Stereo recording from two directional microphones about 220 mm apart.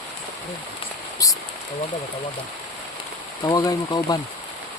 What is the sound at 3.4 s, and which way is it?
Speech, 15° left (ahead or behind).